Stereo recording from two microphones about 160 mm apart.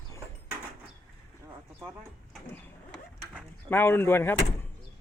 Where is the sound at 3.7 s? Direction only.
15° left (ahead or behind).